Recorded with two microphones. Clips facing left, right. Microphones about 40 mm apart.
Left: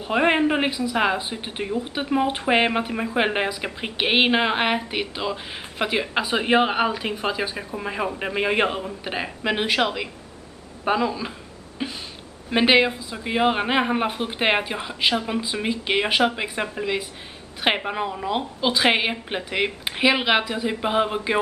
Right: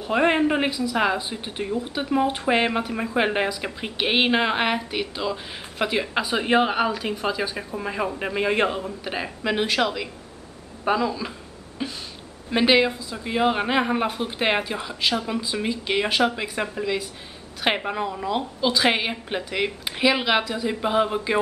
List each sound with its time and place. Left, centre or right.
0.0 s a man's voice: centre
11.8 s a sound: centre
12.4 s a man's voice: left